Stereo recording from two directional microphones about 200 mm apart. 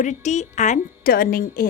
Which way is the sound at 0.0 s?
35° left (ahead or behind).